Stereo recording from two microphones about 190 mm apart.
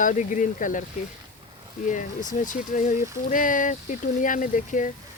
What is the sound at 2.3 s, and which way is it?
Speech, 45° left (ahead or behind).